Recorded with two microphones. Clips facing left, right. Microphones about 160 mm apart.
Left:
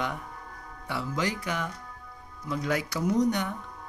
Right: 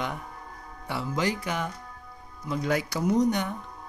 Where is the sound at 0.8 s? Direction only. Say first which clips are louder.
Right 2 dB; 25° right (ahead or behind).